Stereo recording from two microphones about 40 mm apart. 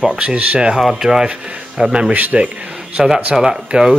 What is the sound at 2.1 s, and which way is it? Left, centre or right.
Speech, right.